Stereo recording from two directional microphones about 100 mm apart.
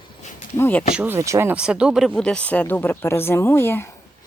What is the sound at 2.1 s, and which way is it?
Speech, 10° left (ahead or behind).